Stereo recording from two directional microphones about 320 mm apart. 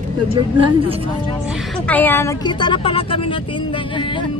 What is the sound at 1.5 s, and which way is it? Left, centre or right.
Speech, centre.